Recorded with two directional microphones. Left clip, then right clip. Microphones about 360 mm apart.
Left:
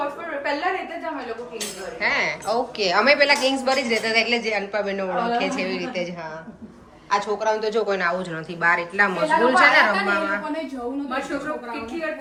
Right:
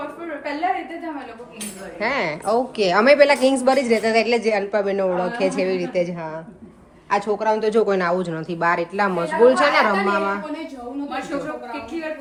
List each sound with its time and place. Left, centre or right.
2.0 s a woman's voice: centre
7.1 s a woman's voice: right
9.9 s a woman's voice: centre